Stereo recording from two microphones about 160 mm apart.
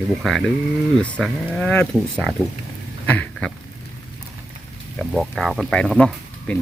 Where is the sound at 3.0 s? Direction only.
10° left (ahead or behind).